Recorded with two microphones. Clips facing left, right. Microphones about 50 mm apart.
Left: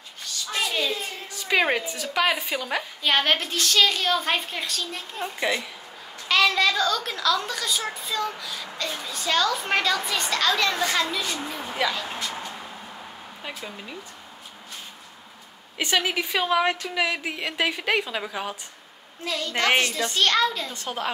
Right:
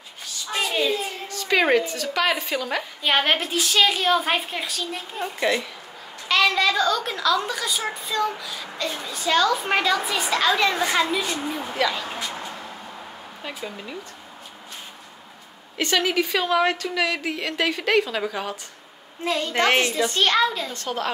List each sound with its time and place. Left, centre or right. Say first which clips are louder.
0.2 s a sound: right 1 dB; centre
1.3 s a woman's voice: right 3 dB; centre
3.0 s a woman's voice: right 1 dB; centre
13.6 s a woman's voice: right 3 dB; centre
15.8 s a woman's voice: right 3 dB; centre
19.2 s a woman's voice: right 4 dB; right
19.8 s a woman's voice: right 2 dB; centre
20.7 s a woman's voice: right 2 dB; centre